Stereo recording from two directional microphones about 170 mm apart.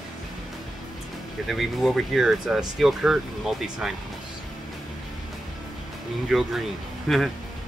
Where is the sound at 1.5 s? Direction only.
Centre (ahead or behind).